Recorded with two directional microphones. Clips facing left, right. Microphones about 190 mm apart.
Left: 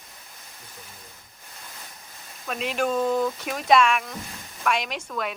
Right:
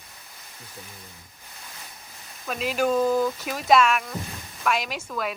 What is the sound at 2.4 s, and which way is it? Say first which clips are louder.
Speech: right 2 dB; centre (ahead or behind).